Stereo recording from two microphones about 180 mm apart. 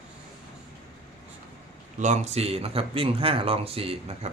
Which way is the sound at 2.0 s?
40° right (ahead or behind).